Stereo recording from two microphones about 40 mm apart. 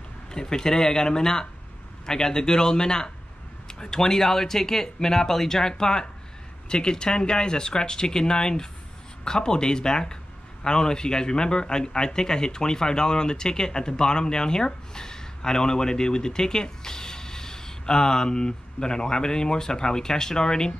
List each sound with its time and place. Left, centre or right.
0.3 s speech: centre